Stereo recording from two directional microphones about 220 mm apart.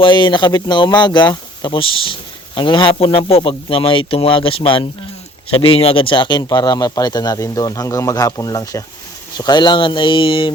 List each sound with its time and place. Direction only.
0.0 s a man's voice: 20° left (ahead or behind)